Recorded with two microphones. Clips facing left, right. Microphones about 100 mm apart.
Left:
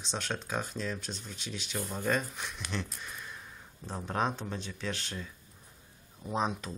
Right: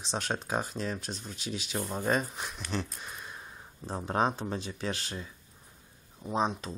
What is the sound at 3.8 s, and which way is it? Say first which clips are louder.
Speech: right 3 dB; 30° right (ahead or behind).